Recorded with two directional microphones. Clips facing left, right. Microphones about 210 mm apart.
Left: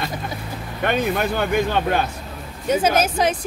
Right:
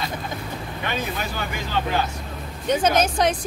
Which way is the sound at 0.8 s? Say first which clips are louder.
Left 8 dB; 60° left (ahead or behind).